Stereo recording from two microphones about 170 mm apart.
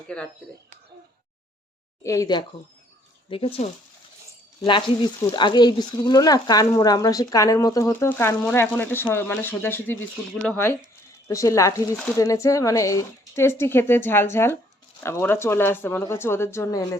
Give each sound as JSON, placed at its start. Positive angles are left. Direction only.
{"t": 2.0, "sound": "speech", "side_deg": 20}
{"t": 3.2, "sound": "speech", "side_deg": 30}
{"t": 5.3, "sound": "speech", "side_deg": 25}